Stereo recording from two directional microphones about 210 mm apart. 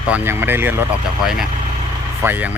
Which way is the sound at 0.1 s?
10° right (ahead or behind).